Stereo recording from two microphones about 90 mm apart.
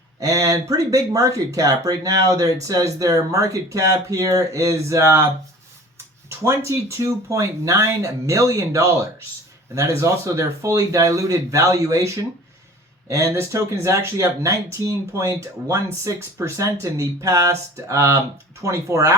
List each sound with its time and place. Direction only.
0.2 s speech: 40° right (ahead or behind)
6.2 s speech: 35° right (ahead or behind)